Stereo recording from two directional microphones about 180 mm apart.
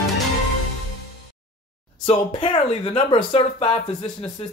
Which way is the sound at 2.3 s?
25° left (ahead or behind).